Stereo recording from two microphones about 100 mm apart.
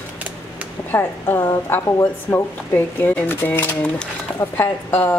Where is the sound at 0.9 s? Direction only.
20° left (ahead or behind).